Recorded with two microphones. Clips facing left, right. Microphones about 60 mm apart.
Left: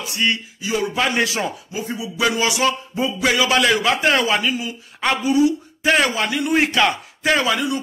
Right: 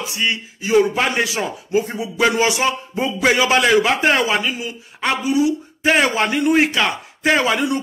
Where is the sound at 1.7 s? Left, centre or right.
Right.